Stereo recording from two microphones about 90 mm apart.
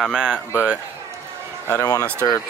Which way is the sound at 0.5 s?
15° right (ahead or behind).